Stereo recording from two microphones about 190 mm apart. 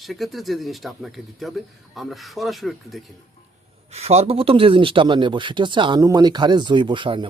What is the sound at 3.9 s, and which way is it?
Speech, 35° right (ahead or behind).